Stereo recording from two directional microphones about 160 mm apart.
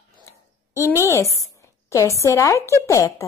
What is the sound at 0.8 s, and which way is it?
A woman's voice, 15° left (ahead or behind).